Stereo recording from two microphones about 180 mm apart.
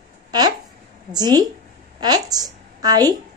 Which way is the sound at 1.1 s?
20° right (ahead or behind).